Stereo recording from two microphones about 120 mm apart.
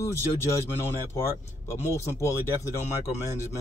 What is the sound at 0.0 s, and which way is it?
Speech, 25° left (ahead or behind).